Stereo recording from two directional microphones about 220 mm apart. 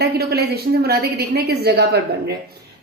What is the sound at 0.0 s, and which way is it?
A woman's voice, 50° right (ahead or behind).